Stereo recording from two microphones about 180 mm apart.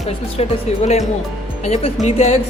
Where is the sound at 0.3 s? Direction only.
35° left (ahead or behind).